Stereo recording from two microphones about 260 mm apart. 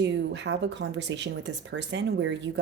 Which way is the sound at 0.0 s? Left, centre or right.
Right.